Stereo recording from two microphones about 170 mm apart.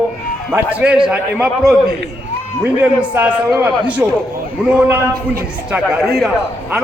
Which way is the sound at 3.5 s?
5° right (ahead or behind).